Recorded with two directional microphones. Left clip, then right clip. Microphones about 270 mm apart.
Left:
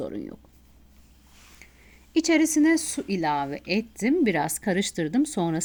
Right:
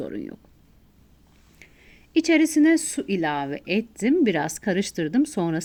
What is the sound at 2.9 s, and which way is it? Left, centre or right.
A woman's voice, left.